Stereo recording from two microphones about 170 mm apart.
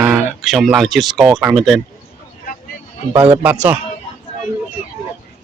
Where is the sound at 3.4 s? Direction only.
10° right (ahead or behind).